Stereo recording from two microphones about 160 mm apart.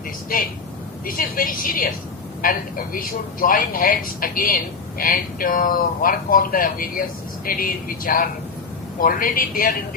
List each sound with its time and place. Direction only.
0.3 s a man's voice: 65° left (ahead or behind)